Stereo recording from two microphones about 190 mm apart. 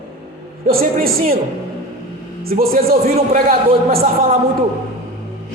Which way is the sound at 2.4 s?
50° right (ahead or behind).